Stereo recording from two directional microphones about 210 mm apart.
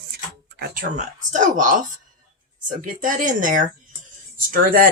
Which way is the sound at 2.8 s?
40° right (ahead or behind).